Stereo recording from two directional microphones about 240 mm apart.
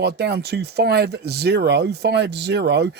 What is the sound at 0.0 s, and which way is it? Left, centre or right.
Speech, right.